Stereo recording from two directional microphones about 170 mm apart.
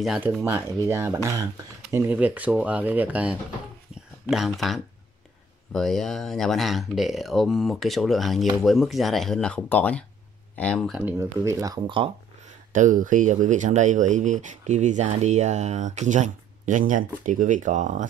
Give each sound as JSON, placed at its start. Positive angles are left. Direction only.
{"t": 0.0, "sound": "speech", "side_deg": 0}
{"t": 0.3, "sound": "speech", "side_deg": -15}
{"t": 3.9, "sound": "a sound", "side_deg": -5}
{"t": 4.3, "sound": "speech", "side_deg": 0}
{"t": 11.0, "sound": "speech", "side_deg": -15}
{"t": 12.7, "sound": "speech", "side_deg": -50}